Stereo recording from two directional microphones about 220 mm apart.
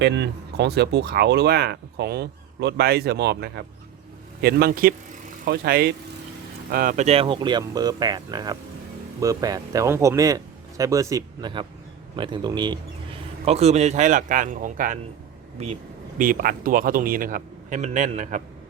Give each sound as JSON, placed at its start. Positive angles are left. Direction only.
{"t": 0.0, "sound": "a man's voice", "side_deg": -50}
{"t": 16.1, "sound": "a man's voice", "side_deg": -40}